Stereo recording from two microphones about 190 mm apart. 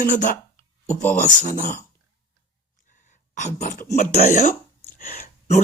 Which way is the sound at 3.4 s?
40° left (ahead or behind).